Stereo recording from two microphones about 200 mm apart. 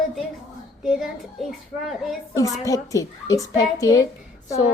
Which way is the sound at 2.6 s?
15° left (ahead or behind).